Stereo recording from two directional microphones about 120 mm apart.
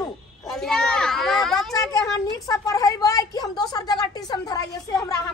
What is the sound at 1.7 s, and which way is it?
A woman's voice, 30° left (ahead or behind).